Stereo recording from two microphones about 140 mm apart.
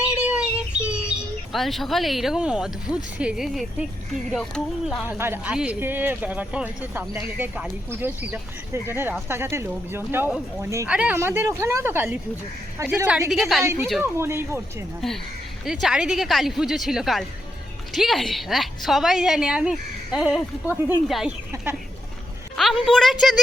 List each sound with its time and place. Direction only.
0.3 s bird: 10° right (ahead or behind)
1.5 s a woman's voice: centre (ahead or behind)
5.0 s speech: 15° right (ahead or behind)
10.8 s speech: 10° right (ahead or behind)
13.3 s a woman's voice: centre (ahead or behind)
14.0 s speech: 15° right (ahead or behind)
15.6 s a woman's voice: 5° right (ahead or behind)
20.7 s speech: 15° right (ahead or behind)
21.1 s a woman's voice: centre (ahead or behind)
21.5 s speech: 15° right (ahead or behind)
22.5 s a woman's voice: centre (ahead or behind)